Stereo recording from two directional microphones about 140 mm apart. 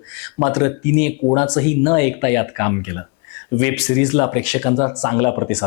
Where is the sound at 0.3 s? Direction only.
20° left (ahead or behind).